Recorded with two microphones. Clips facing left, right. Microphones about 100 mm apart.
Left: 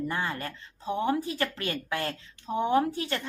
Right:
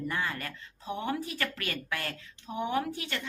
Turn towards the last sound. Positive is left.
turn(degrees=35)  # may be behind; listen again after turning